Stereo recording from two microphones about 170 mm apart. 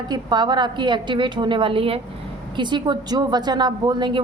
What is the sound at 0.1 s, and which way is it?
A woman's voice, 25° right (ahead or behind).